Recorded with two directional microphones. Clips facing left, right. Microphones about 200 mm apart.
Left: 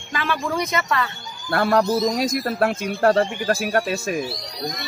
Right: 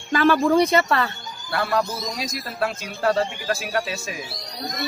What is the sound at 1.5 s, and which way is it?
Speech, 50° left (ahead or behind).